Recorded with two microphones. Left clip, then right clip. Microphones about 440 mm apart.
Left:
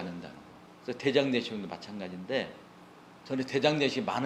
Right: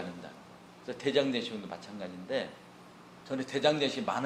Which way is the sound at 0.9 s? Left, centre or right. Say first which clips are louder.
Left 2 dB; left.